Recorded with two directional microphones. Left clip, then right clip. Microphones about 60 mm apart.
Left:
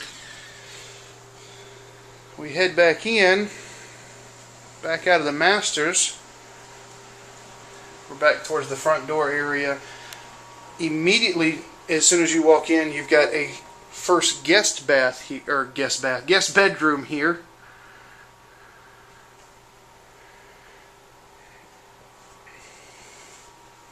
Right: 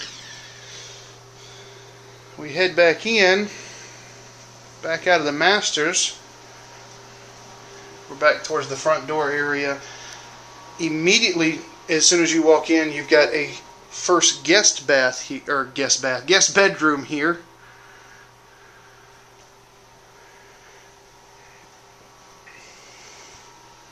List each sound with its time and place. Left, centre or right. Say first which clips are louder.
0.0 s a sound: right 3 dB; right
2.3 s speech: right 1 dB; centre
8.2 s speech: right 1 dB; centre